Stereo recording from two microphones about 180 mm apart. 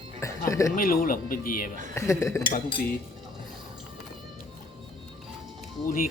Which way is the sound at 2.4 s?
25° left (ahead or behind).